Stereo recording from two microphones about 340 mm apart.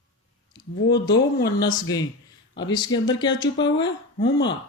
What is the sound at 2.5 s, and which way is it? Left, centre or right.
Speech, centre.